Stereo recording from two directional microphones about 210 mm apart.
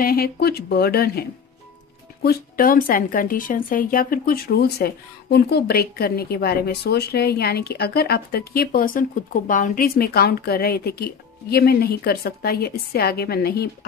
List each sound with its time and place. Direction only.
0.0 s a woman's voice: 45° left (ahead or behind)
2.2 s a woman's voice: 45° left (ahead or behind)